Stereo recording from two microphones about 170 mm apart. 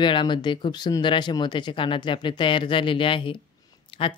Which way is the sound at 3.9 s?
30° left (ahead or behind).